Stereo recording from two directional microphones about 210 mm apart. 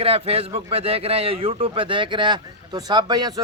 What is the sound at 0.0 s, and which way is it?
A man's voice, 30° right (ahead or behind).